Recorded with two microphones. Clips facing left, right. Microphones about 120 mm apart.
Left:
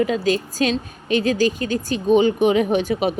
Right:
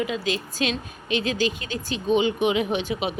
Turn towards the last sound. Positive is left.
turn(degrees=45)  # may be behind; listen again after turning